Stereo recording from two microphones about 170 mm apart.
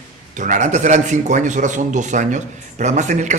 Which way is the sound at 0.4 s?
45° right (ahead or behind).